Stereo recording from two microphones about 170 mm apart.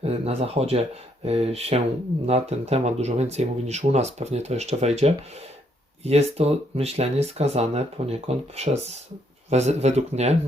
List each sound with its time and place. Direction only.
0.0 s speech: 35° right (ahead or behind)